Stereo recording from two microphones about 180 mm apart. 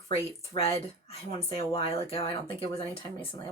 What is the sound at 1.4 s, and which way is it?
Speech, 30° left (ahead or behind).